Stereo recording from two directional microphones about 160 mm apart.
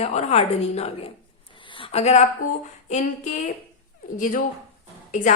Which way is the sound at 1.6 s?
35° left (ahead or behind).